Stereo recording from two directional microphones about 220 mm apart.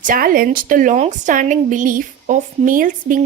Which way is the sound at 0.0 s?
40° right (ahead or behind).